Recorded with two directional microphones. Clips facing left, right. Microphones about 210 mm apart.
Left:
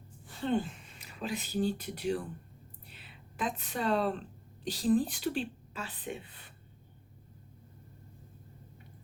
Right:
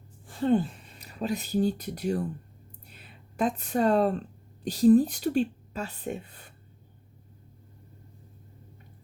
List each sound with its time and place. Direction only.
0.3 s speech: 45° right (ahead or behind)
2.8 s a sound: 45° right (ahead or behind)
4.6 s a woman's voice: 45° right (ahead or behind)